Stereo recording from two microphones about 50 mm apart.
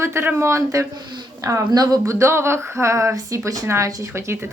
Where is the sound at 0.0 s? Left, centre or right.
Right.